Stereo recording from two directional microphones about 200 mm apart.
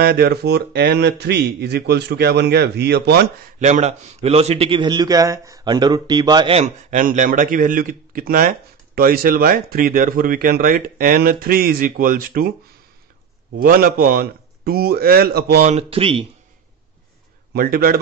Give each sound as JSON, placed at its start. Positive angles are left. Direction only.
{"t": 0.0, "sound": "speech", "side_deg": -50}
{"t": 3.5, "sound": "a man's voice", "side_deg": -35}
{"t": 13.6, "sound": "a man's voice", "side_deg": -45}
{"t": 15.6, "sound": "speech", "side_deg": -30}
{"t": 17.6, "sound": "a man's voice", "side_deg": -45}